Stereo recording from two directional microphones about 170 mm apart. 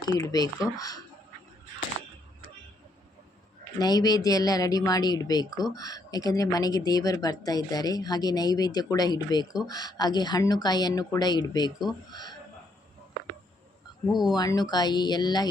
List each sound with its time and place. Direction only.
0.0 s a woman's voice: 20° left (ahead or behind)
3.8 s a woman's voice: 25° left (ahead or behind)
14.1 s speech: centre (ahead or behind)
14.3 s a woman's voice: 25° left (ahead or behind)